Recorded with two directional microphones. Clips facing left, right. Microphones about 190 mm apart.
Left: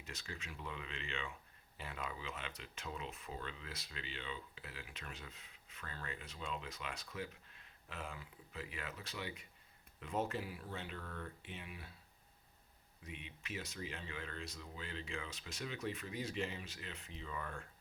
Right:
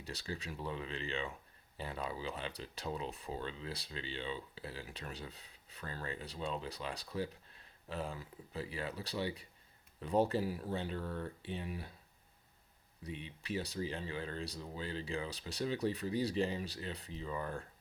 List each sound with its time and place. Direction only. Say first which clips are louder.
0.0 s speech: right 7 dB; 35° right (ahead or behind)
13.0 s speech: right 6 dB; 35° right (ahead or behind)